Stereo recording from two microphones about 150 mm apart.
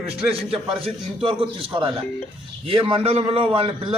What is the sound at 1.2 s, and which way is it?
A man's voice, 35° right (ahead or behind).